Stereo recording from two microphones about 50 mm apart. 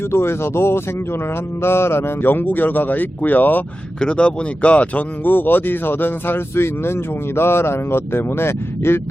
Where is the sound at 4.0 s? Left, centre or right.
Left.